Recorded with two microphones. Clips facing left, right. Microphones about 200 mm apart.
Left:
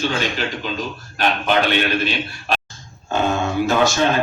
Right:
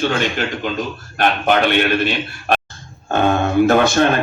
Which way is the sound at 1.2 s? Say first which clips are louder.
Right 3 dB; 55° right (ahead or behind).